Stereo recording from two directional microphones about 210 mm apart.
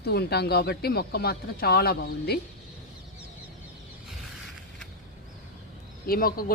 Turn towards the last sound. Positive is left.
turn(degrees=45)  # may be behind; listen again after turning